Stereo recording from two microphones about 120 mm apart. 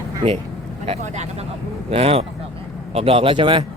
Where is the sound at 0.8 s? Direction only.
65° right (ahead or behind).